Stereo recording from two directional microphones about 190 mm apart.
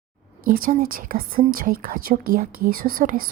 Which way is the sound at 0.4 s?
50° right (ahead or behind).